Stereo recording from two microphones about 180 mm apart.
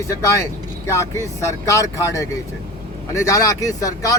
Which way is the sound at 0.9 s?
15° left (ahead or behind).